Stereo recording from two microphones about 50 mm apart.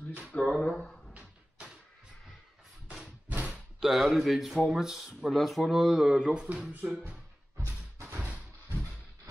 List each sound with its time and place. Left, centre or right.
0.3 s speech: left
3.3 s a sound: right
3.8 s speech: centre
6.5 s speech: right
7.1 s music: right
8.2 s a sound: right